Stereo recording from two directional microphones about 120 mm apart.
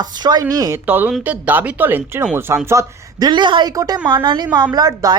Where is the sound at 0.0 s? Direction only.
35° right (ahead or behind).